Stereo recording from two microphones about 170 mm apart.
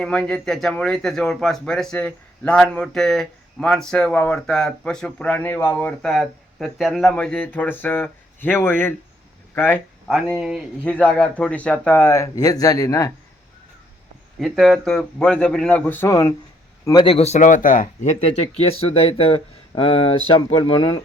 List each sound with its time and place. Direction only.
0.0 s speech: 5° left (ahead or behind)
5.7 s speech: 5° left (ahead or behind)
10.1 s speech: centre (ahead or behind)
10.8 s speech: 10° left (ahead or behind)
14.3 s speech: centre (ahead or behind); by 21.0 s 30° left (ahead or behind)